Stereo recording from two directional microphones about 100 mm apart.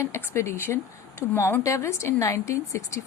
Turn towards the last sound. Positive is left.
turn(degrees=30)  # may be behind; listen again after turning